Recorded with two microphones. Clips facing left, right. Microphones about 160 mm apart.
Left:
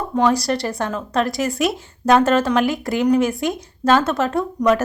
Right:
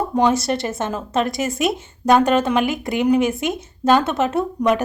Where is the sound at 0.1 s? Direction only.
10° right (ahead or behind).